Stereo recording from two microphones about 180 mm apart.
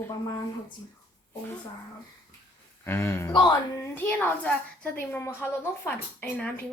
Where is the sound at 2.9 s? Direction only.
15° left (ahead or behind).